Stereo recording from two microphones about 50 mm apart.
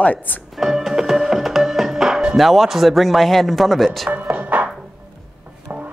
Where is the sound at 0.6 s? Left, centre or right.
Centre.